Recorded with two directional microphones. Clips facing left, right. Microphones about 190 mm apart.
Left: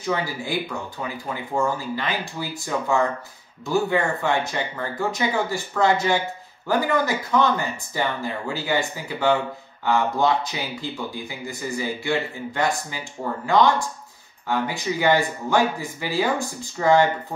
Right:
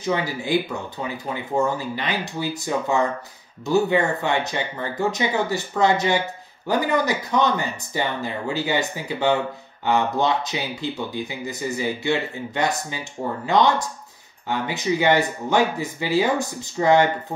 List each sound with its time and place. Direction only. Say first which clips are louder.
0.0 s speech: right 2 dB; 20° right (ahead or behind)